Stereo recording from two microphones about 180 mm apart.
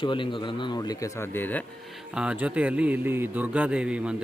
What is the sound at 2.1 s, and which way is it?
A man's voice, 5° right (ahead or behind).